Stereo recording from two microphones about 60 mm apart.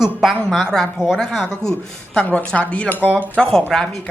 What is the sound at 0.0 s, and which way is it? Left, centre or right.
Speech, centre.